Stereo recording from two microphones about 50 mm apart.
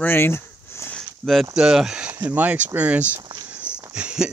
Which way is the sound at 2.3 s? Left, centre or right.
Right.